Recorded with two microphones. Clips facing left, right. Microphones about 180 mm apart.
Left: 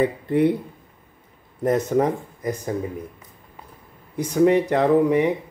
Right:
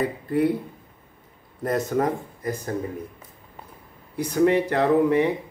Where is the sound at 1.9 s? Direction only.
20° left (ahead or behind).